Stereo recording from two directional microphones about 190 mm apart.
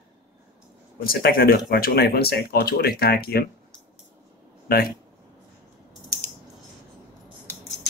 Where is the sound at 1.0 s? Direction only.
50° left (ahead or behind).